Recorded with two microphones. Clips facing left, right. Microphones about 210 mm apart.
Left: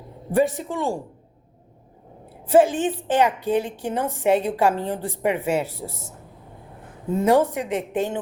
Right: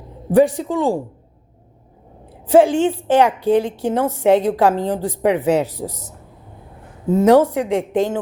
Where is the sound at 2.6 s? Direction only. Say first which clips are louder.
Right 5 dB; 10° right (ahead or behind).